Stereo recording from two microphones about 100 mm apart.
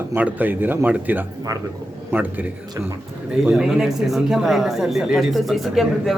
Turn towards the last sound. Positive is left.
turn(degrees=0)  # may be behind; listen again after turning